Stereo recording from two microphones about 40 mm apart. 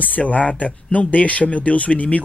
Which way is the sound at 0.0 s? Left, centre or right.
Left.